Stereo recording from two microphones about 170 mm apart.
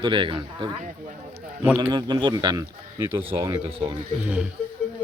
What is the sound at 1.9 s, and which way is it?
Speech, 25° right (ahead or behind).